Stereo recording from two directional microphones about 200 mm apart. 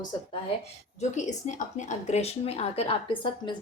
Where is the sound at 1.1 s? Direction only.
40° left (ahead or behind).